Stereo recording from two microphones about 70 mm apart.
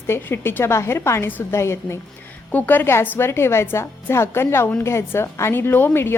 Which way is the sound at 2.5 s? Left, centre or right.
Left.